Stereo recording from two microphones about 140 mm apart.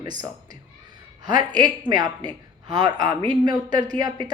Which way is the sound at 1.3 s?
30° right (ahead or behind).